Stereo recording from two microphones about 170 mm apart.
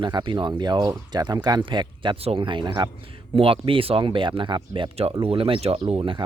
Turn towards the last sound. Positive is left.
turn(degrees=-30)  # may be behind; listen again after turning